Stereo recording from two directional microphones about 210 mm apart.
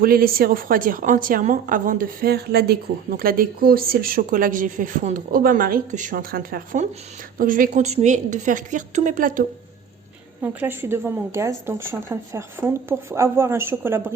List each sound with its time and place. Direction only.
0.0 s a woman's voice: 45° right (ahead or behind)
10.4 s speech: 10° right (ahead or behind)